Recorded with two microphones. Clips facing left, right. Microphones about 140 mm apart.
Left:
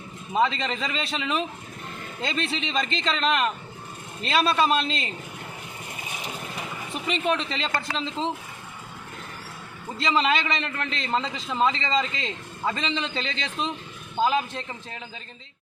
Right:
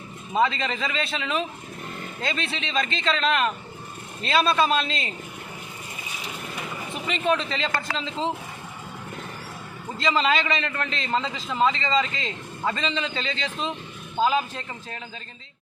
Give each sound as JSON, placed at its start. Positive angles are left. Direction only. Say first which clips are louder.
{"t": 0.3, "sound": "a man's voice", "louder": "right 1 dB", "side_deg": 0}
{"t": 7.1, "sound": "a man's voice", "louder": "right 1 dB", "side_deg": 0}
{"t": 7.9, "sound": "speech", "louder": "even", "side_deg": -90}
{"t": 10.2, "sound": "a man's voice", "louder": "even", "side_deg": 0}